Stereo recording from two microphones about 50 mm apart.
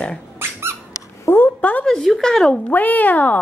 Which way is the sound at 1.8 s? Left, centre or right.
Centre.